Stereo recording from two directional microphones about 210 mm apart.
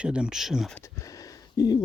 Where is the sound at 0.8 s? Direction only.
15° left (ahead or behind).